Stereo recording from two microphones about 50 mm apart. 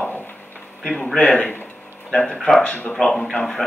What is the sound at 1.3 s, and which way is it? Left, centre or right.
Speech, left.